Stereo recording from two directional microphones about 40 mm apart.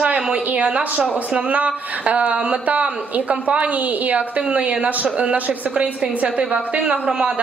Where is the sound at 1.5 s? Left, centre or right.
Right.